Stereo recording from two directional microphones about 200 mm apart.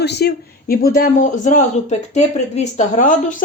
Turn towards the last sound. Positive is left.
turn(degrees=40)  # may be behind; listen again after turning